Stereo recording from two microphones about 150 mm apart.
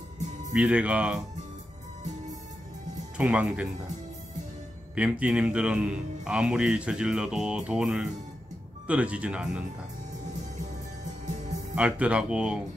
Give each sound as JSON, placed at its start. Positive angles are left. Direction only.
{"t": 0.5, "sound": "speech", "side_deg": -10}
{"t": 3.2, "sound": "speech", "side_deg": -5}
{"t": 4.9, "sound": "speech", "side_deg": -10}
{"t": 11.7, "sound": "speech", "side_deg": -10}